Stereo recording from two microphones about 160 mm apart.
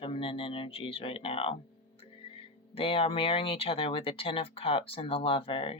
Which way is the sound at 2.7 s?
35° left (ahead or behind).